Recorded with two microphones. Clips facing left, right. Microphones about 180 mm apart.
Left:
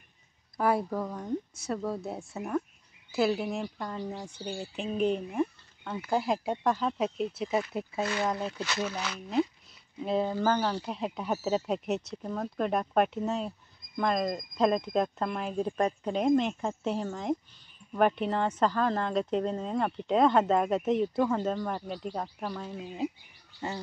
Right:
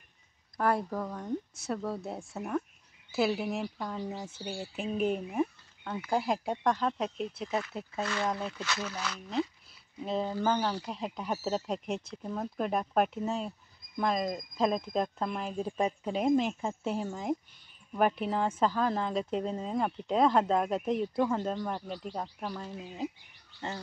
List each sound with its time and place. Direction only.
0.6 s speech: 5° left (ahead or behind)
7.4 s speech: 15° left (ahead or behind); by 8.6 s 30° left (ahead or behind)
8.8 s speech: 10° left (ahead or behind)